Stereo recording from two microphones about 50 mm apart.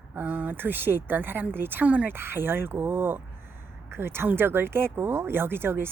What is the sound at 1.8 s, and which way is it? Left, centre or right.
Speech, right.